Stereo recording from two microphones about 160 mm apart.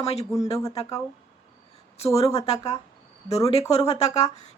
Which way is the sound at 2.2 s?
40° left (ahead or behind).